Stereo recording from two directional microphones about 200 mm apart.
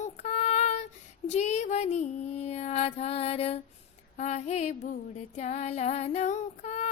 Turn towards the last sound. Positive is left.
turn(degrees=35)  # may be behind; listen again after turning